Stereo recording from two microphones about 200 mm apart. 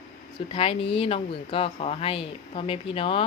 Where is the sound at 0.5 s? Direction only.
30° left (ahead or behind).